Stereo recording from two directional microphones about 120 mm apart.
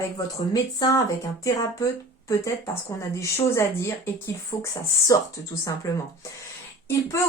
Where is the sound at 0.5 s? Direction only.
30° left (ahead or behind).